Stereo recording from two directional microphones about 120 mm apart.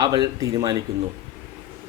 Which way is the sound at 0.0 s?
30° right (ahead or behind).